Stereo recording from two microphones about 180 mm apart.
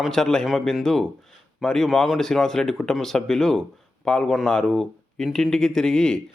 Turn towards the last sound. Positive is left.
turn(degrees=5)  # may be behind; listen again after turning